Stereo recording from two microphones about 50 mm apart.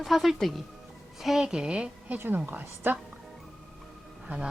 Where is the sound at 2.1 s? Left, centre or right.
Right.